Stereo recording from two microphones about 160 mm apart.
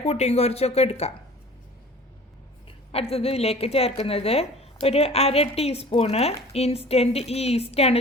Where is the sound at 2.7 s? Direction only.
35° left (ahead or behind).